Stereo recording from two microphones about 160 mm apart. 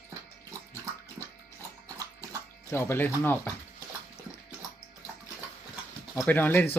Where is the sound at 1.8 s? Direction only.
20° right (ahead or behind).